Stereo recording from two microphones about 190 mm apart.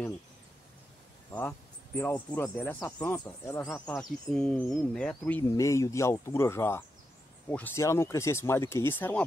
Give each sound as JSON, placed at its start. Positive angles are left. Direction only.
{"t": 2.0, "sound": "speech", "side_deg": 10}
{"t": 5.4, "sound": "speech", "side_deg": 15}